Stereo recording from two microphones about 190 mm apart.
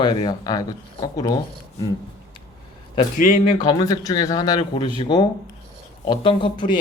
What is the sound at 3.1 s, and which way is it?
Speech, 45° left (ahead or behind).